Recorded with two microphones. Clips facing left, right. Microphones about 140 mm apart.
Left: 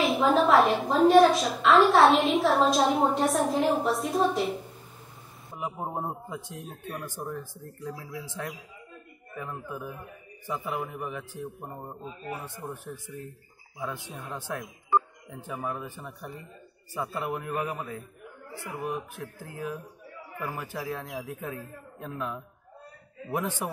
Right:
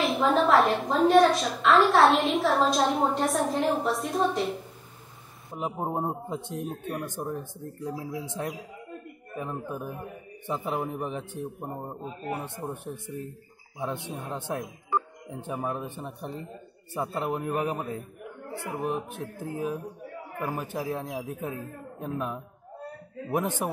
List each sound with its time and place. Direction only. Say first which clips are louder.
0.0 s a woman's voice: left 1 dB; centre (ahead or behind)
5.5 s a man's voice: right 3 dB; 20° right (ahead or behind)
9.3 s a man's voice: right 3 dB; 20° right (ahead or behind)
12.4 s a man's voice: right 3 dB; 25° right (ahead or behind)
23.2 s a man's voice: right 3 dB; 20° right (ahead or behind)